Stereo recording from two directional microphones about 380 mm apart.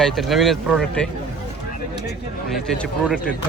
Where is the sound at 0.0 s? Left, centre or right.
Centre.